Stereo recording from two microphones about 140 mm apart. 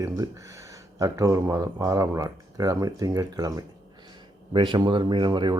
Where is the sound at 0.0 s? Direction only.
20° right (ahead or behind).